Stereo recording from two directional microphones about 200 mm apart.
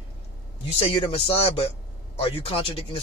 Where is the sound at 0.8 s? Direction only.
30° left (ahead or behind).